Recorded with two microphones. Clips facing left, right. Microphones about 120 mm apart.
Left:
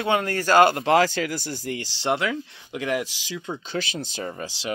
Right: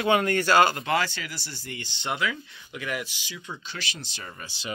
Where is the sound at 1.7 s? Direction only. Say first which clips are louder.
Left 7 dB; 90° left.